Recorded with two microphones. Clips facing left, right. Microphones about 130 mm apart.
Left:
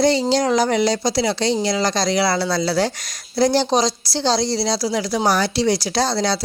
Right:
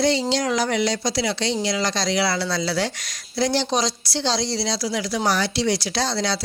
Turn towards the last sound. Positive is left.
turn(degrees=40)  # may be behind; listen again after turning